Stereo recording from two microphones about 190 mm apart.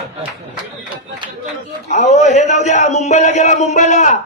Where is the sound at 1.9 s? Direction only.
40° left (ahead or behind).